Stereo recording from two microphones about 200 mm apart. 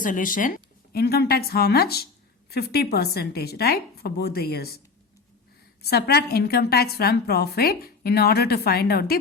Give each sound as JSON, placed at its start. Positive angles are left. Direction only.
{"t": 0.0, "sound": "a woman's voice", "side_deg": 40}
{"t": 5.8, "sound": "a woman's voice", "side_deg": 55}